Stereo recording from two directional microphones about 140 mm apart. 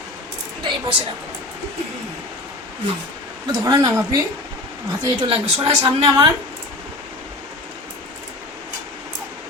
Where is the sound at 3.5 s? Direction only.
30° right (ahead or behind).